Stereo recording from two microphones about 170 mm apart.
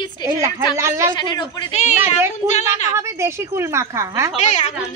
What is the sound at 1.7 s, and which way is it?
A woman's voice, 45° left (ahead or behind).